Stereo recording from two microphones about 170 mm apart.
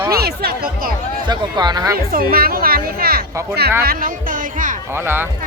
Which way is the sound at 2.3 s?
60° right (ahead or behind).